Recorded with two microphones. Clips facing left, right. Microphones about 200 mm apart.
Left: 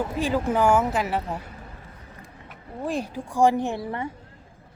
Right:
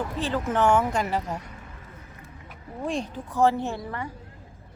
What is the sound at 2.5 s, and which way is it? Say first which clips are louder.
Speech: left 1 dB; centre (ahead or behind).